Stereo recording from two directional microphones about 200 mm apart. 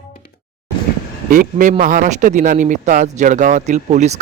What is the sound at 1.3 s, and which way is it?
Speech, 40° right (ahead or behind).